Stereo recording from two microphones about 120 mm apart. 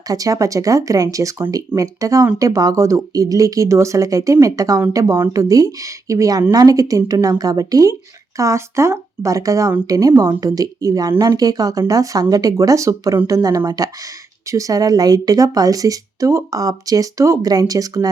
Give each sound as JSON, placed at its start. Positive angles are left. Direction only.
{"t": 0.1, "sound": "a woman's voice", "side_deg": -30}